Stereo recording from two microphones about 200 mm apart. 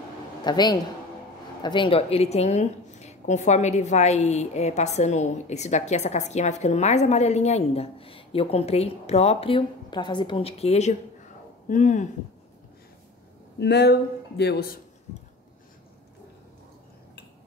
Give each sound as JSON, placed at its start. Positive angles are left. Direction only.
{"t": 0.4, "sound": "a man's voice", "side_deg": 20}
{"t": 13.6, "sound": "speech", "side_deg": 55}